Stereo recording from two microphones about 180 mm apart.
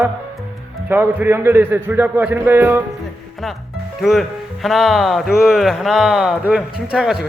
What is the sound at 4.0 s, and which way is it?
Speech, centre (ahead or behind).